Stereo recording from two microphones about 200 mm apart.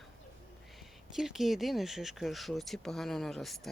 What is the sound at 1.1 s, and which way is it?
Speech, centre (ahead or behind).